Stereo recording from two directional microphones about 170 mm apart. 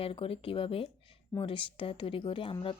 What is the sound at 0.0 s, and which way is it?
Speech, 35° left (ahead or behind).